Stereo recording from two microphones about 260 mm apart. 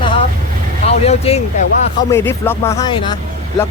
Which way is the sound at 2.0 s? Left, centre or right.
Centre.